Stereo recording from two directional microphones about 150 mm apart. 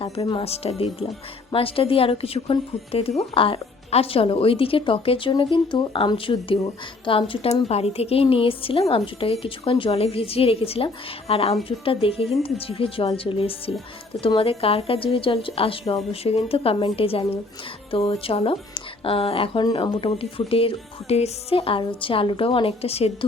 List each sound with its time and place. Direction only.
0.3 s a woman's voice: 40° left (ahead or behind)